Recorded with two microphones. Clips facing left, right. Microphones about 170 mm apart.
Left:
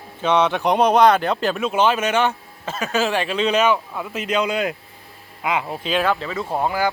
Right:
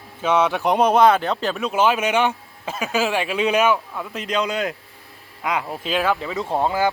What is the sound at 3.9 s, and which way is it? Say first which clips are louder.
Speech: left 2 dB; 5° left (ahead or behind).